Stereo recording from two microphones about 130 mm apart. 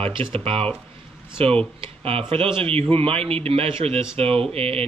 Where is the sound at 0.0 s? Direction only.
45° right (ahead or behind).